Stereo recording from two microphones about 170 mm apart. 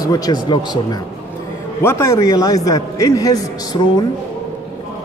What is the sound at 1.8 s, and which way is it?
A man's voice, 15° left (ahead or behind).